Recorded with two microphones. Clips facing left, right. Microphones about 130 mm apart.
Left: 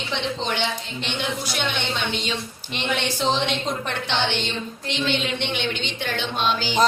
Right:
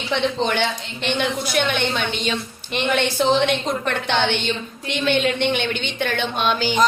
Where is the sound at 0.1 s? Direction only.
55° right (ahead or behind).